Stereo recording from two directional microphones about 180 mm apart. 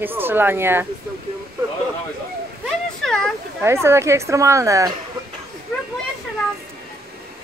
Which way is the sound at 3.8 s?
15° right (ahead or behind).